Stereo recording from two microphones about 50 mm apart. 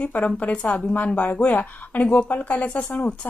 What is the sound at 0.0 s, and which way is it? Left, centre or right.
A woman's voice, left.